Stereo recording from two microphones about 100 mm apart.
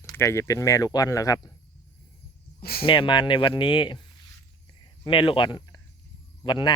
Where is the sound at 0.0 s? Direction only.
35° left (ahead or behind).